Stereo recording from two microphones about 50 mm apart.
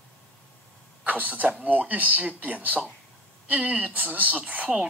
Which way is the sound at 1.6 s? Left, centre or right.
Right.